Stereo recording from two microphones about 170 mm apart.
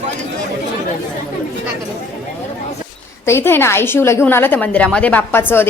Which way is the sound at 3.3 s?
15° left (ahead or behind).